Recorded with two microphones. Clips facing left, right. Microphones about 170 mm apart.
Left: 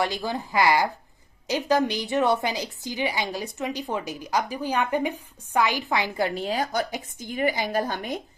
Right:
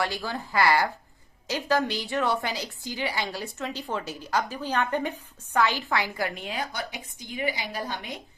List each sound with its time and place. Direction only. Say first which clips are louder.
0.0 s a woman's voice: left 3 dB; 20° left (ahead or behind); by 8.2 s 45° left (ahead or behind)